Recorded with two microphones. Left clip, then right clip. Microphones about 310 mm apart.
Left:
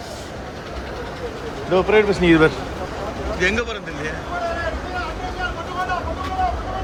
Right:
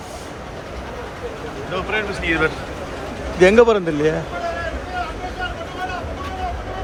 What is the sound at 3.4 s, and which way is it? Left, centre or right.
Speech, centre.